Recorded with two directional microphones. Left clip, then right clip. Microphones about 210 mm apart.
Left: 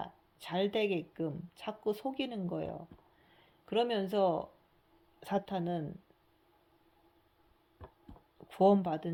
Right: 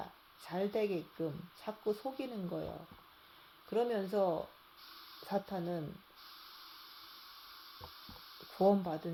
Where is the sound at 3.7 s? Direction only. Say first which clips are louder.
Left 2 dB; 45° left (ahead or behind).